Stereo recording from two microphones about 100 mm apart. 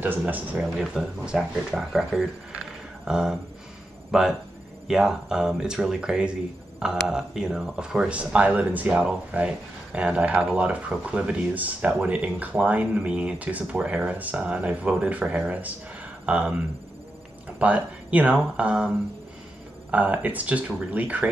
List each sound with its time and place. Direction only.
0.0 s speech: 15° right (ahead or behind)
0.6 s speech: 5° right (ahead or behind)
17.6 s speech: 15° right (ahead or behind)
19.9 s speech: 15° right (ahead or behind)